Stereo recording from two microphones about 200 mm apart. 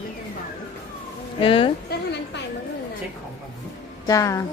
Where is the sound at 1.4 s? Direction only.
25° left (ahead or behind).